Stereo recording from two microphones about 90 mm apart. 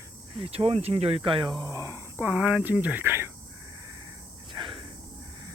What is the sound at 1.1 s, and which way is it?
Speech, 75° right (ahead or behind).